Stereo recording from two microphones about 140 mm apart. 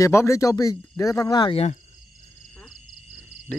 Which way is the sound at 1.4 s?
45° left (ahead or behind).